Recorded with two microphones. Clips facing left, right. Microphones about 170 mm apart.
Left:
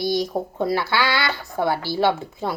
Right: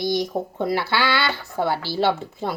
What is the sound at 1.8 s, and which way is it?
Speech, 15° left (ahead or behind).